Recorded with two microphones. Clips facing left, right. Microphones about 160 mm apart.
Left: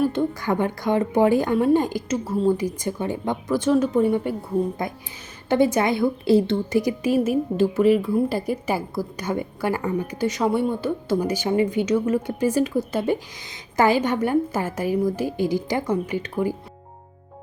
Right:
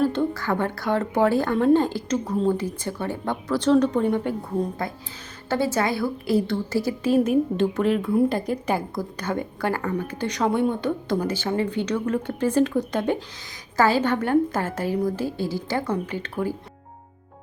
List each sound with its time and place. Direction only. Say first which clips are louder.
0.0 s a woman's voice: left 1 dB; 15° left (ahead or behind)